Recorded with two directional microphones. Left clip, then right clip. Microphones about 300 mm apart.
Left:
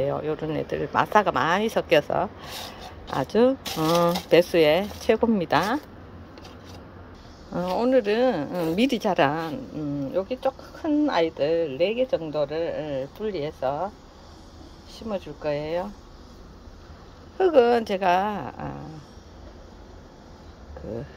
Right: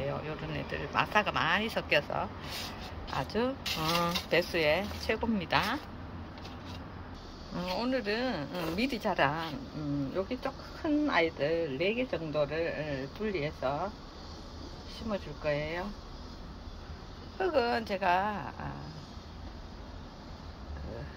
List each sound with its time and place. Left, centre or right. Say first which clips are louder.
0.0 s speech: left 10 dB; left
7.5 s speech: left 11 dB; left
15.0 s speech: left 5 dB; left
17.4 s speech: left 11 dB; left